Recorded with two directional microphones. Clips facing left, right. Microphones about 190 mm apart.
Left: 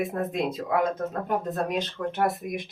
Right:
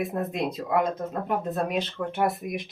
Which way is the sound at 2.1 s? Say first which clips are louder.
Right 1 dB; centre (ahead or behind).